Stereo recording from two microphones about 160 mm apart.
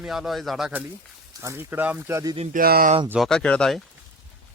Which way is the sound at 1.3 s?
20° right (ahead or behind).